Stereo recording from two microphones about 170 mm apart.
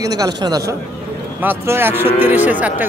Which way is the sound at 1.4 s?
10° right (ahead or behind).